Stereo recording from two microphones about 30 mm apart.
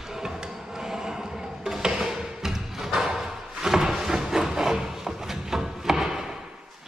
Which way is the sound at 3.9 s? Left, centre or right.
Centre.